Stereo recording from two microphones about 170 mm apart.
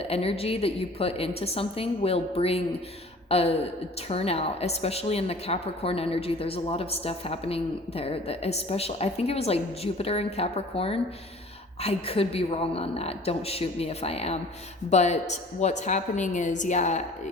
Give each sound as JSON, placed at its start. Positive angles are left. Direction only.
{"t": 0.1, "sound": "a woman's voice", "side_deg": 35}